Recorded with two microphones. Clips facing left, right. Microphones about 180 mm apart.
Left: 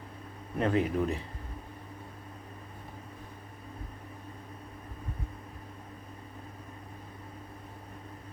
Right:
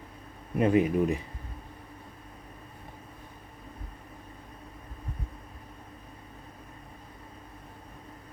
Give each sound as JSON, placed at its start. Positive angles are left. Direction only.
{"t": 0.6, "sound": "speech", "side_deg": -15}